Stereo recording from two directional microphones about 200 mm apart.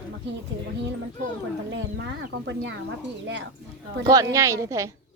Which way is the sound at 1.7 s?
65° right (ahead or behind).